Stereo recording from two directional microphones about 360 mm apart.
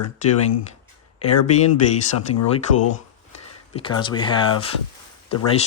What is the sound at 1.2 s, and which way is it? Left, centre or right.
Speech, left.